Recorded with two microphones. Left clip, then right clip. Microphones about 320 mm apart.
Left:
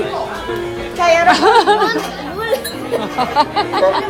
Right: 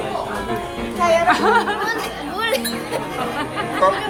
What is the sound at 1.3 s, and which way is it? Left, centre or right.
Speech, centre.